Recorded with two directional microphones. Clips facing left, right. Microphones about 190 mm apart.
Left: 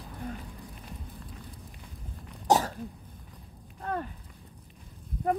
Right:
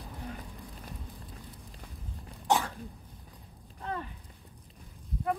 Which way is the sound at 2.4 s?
40° left (ahead or behind).